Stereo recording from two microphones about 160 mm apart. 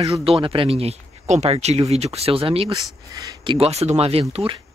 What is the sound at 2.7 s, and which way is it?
Speech, 25° right (ahead or behind).